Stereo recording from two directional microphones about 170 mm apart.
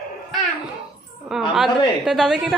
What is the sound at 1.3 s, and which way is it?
A woman's voice, centre (ahead or behind).